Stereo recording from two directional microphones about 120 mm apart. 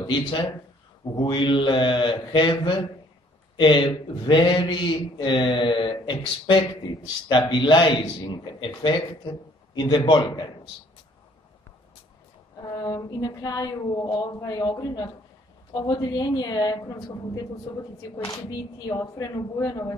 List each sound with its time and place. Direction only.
0.0 s a man's voice: 40° left (ahead or behind)
12.6 s a man's voice: 30° left (ahead or behind)
18.9 s a man's voice: 30° left (ahead or behind)